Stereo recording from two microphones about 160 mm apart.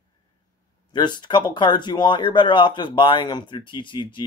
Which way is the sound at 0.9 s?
30° left (ahead or behind).